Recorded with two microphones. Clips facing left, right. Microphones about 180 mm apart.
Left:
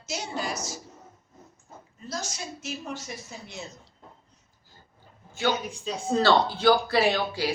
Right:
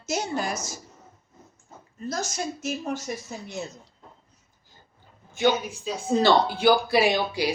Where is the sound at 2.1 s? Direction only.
50° right (ahead or behind).